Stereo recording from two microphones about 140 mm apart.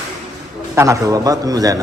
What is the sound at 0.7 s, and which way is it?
Speech, 20° right (ahead or behind).